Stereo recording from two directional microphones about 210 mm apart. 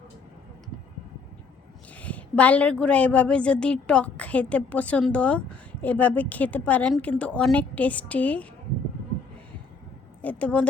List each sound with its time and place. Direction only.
2.0 s a woman's voice: 5° left (ahead or behind)
10.2 s a woman's voice: 5° left (ahead or behind)